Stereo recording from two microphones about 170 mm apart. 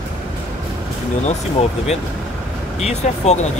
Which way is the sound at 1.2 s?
40° left (ahead or behind).